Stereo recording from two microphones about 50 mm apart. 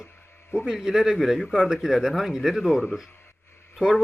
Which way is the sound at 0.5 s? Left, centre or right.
Centre.